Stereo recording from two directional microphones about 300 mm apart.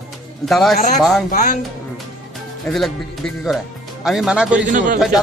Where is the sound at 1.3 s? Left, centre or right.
Left.